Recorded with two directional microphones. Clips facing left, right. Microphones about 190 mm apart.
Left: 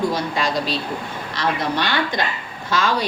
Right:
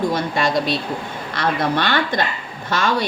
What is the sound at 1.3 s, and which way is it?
A woman's voice, 55° right (ahead or behind).